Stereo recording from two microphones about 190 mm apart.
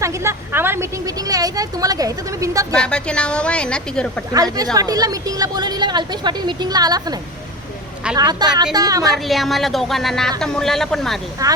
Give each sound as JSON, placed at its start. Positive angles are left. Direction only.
{"t": 0.0, "sound": "a woman's voice", "side_deg": -15}
{"t": 2.7, "sound": "speech", "side_deg": 5}
{"t": 4.5, "sound": "a woman's voice", "side_deg": -20}
{"t": 9.1, "sound": "speech", "side_deg": 0}
{"t": 11.4, "sound": "a woman's voice", "side_deg": -20}